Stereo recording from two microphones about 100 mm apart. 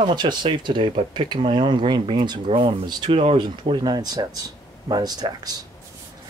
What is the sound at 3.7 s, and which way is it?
Speech, 45° right (ahead or behind).